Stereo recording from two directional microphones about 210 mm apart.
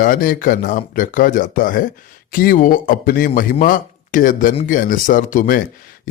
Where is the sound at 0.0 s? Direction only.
40° left (ahead or behind).